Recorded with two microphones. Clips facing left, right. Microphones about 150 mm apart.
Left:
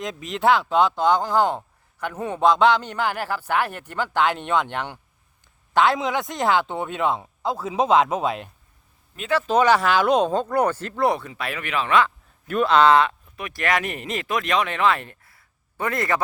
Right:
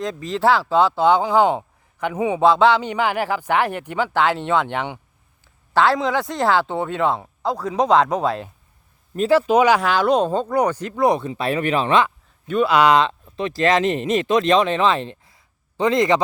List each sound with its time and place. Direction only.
0.0 s speech: centre (ahead or behind)
9.1 s speech: 35° right (ahead or behind)
9.5 s speech: 10° right (ahead or behind)
9.8 s speech: 10° left (ahead or behind)
10.2 s speech: 10° right (ahead or behind); by 12.0 s 30° right (ahead or behind)
12.6 s speech: 10° right (ahead or behind)